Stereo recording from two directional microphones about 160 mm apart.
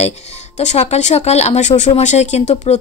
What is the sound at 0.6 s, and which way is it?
Speech, 45° left (ahead or behind).